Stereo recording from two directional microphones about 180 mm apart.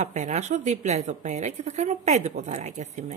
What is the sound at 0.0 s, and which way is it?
A woman's voice, 40° right (ahead or behind).